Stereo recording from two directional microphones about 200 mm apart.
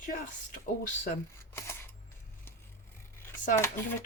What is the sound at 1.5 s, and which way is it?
Camera, 15° left (ahead or behind).